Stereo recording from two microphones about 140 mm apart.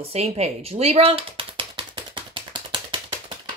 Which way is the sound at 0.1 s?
45° right (ahead or behind).